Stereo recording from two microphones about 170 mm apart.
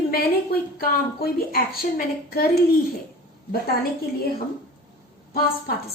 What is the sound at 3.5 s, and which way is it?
Speech, 60° left (ahead or behind).